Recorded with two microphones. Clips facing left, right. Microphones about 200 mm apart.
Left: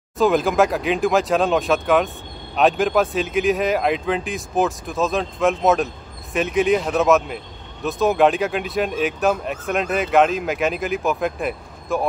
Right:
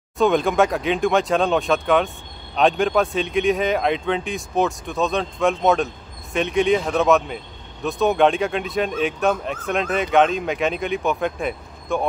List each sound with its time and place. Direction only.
0.2 s speech: centre (ahead or behind)